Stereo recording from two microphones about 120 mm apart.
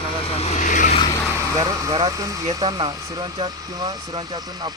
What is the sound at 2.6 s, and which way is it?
Speech, 40° right (ahead or behind).